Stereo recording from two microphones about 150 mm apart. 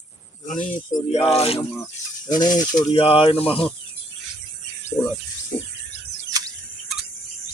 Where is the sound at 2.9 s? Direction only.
40° left (ahead or behind).